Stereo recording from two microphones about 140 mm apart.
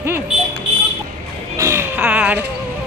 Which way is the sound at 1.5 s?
20° right (ahead or behind).